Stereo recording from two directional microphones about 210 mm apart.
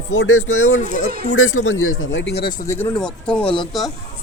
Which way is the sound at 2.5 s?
15° left (ahead or behind).